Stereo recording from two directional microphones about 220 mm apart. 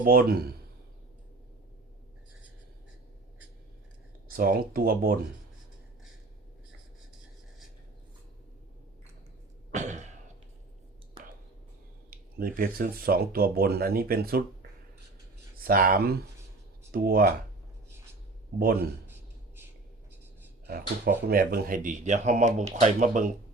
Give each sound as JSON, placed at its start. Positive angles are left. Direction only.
{"t": 0.0, "sound": "speech", "side_deg": -40}
{"t": 4.4, "sound": "speech", "side_deg": -40}
{"t": 9.7, "sound": "a sound", "side_deg": -35}
{"t": 12.1, "sound": "speech", "side_deg": -40}
{"t": 15.6, "sound": "speech", "side_deg": -40}
{"t": 18.5, "sound": "speech", "side_deg": -45}
{"t": 20.7, "sound": "speech", "side_deg": -45}